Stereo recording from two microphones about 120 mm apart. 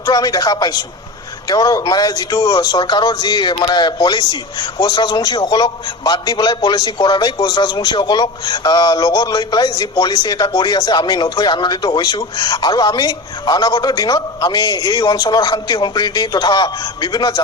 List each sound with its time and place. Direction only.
0.0 s a man's voice: 30° left (ahead or behind)